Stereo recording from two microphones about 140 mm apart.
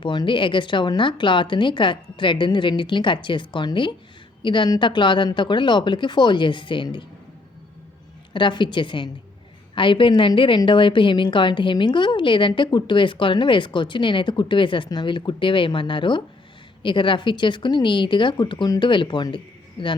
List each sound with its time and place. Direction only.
0.0 s a woman's voice: 35° left (ahead or behind)
8.3 s a woman's voice: 35° left (ahead or behind)